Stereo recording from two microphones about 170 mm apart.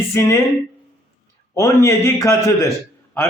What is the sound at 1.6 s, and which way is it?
A man's voice, 15° left (ahead or behind).